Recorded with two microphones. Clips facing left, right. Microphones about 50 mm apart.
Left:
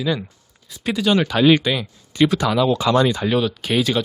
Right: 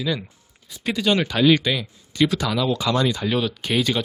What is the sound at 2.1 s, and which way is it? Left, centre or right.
Speech, left.